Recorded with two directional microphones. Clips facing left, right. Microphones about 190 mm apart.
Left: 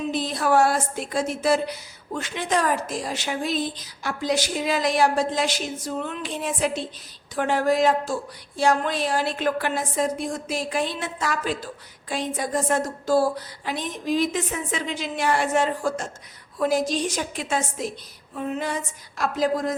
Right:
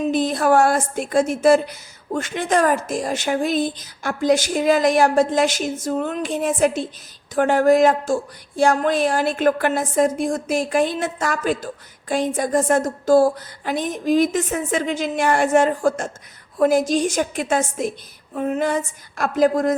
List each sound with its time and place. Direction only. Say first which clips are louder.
0.1 s speech: right 4 dB; 50° right (ahead or behind)